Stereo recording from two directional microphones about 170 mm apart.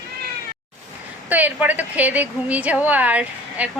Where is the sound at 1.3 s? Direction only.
10° right (ahead or behind).